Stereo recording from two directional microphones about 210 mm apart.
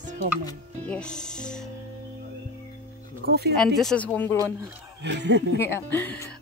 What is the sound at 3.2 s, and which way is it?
Speech, 50° right (ahead or behind).